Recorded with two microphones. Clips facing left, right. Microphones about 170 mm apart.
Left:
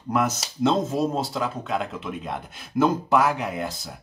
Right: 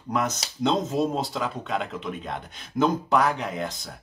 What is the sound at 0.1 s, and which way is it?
Speech, 5° left (ahead or behind).